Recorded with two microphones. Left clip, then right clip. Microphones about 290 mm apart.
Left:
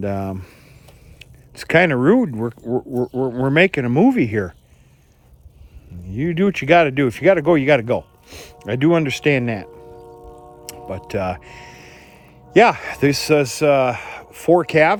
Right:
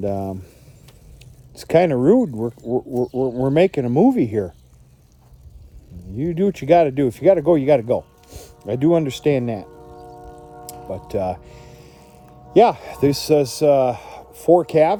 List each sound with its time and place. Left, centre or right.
0.0 s speech: left
3.3 s speech: left
6.1 s speech: left
10.7 s music: left
12.5 s speech: left